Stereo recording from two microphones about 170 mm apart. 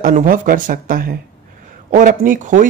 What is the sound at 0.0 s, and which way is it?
Speech, 55° right (ahead or behind).